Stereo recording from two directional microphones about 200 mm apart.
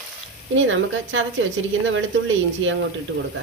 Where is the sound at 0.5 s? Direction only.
70° right (ahead or behind).